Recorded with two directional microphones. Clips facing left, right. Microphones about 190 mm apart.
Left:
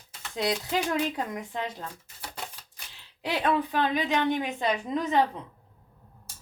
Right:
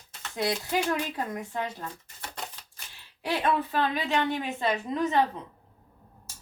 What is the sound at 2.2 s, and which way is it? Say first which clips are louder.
Typewriter: even; 10° left (ahead or behind).